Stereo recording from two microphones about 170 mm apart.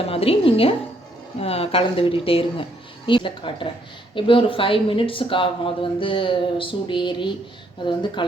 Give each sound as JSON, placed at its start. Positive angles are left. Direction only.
{"t": 0.0, "sound": "a woman's voice", "side_deg": 35}